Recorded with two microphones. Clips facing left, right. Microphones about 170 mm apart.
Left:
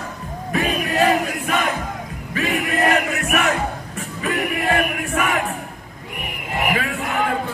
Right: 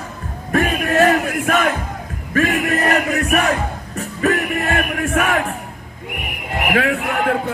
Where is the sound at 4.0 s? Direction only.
45° right (ahead or behind).